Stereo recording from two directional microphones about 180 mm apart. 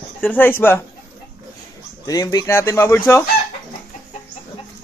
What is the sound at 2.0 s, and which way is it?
Speech, 20° left (ahead or behind).